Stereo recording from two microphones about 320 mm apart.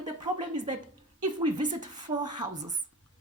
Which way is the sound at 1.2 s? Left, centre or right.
Centre.